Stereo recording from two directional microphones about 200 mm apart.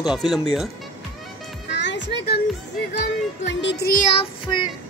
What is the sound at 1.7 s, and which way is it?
Music, 60° left (ahead or behind).